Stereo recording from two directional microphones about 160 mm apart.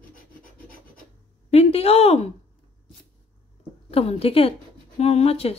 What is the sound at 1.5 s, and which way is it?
Speech, 40° left (ahead or behind).